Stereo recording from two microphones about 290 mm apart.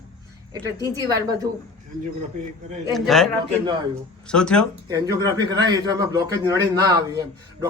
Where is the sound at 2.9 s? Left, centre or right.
Centre.